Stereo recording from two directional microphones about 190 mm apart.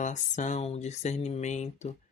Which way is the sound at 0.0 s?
40° left (ahead or behind).